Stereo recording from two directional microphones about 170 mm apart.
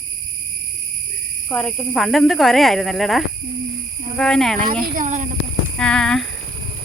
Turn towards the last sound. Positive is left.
turn(degrees=5)  # may be behind; listen again after turning